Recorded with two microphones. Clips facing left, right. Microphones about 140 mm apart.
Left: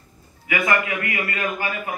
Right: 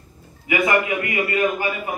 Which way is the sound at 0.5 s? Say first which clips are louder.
Right 3 dB; 20° right (ahead or behind).